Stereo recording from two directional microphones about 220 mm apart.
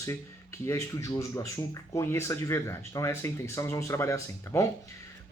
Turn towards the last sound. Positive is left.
turn(degrees=15)  # may be behind; listen again after turning